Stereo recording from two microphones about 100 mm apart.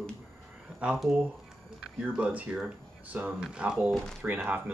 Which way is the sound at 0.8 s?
10° right (ahead or behind).